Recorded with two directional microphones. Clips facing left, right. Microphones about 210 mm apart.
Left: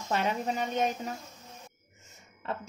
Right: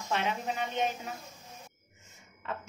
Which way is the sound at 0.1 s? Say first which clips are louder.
Left 3 dB; 40° left (ahead or behind).